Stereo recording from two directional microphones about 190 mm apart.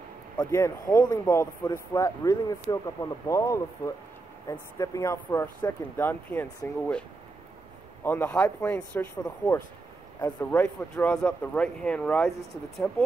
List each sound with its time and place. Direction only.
0.4 s speech: 15° left (ahead or behind)